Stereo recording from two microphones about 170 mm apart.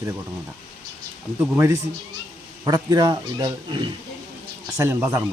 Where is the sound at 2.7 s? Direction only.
25° right (ahead or behind).